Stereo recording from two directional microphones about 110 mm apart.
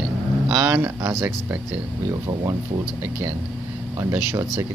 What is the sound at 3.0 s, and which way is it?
Speech, 20° right (ahead or behind).